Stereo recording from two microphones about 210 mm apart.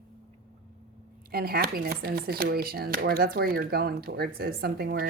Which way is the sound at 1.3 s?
45° right (ahead or behind).